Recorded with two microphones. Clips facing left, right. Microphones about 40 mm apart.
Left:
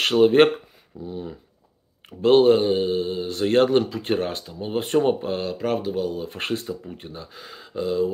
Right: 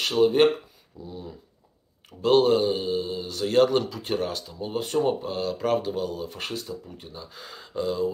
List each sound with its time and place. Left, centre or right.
0.0 s speech: left
1.0 s speech: left
4.7 s speech: left
5.5 s speech: centre
6.2 s speech: left
7.2 s speech: centre